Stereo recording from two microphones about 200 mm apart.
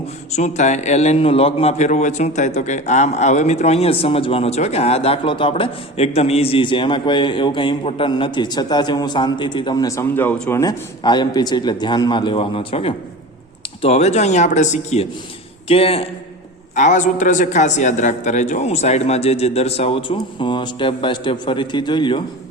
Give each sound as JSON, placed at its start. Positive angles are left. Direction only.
{"t": 0.3, "sound": "a man's voice", "side_deg": 35}
{"t": 10.6, "sound": "a man's voice", "side_deg": 20}